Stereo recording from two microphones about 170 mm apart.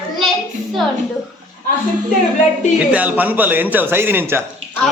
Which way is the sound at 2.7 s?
10° right (ahead or behind).